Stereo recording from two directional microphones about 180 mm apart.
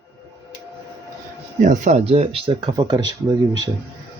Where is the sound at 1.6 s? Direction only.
45° right (ahead or behind); by 3.0 s 25° right (ahead or behind).